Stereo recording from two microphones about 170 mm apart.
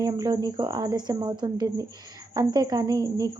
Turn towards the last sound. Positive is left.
turn(degrees=-20)  # may be behind; listen again after turning